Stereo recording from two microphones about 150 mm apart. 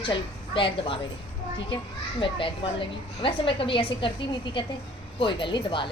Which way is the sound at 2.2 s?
35° left (ahead or behind).